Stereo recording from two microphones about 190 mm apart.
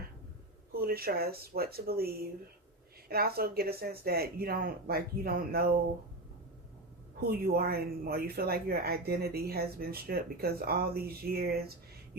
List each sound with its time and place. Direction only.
0.7 s speech: 55° right (ahead or behind)
7.3 s speech: 55° right (ahead or behind)